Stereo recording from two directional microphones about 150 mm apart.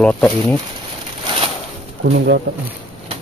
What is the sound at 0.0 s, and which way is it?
Speech, 10° left (ahead or behind).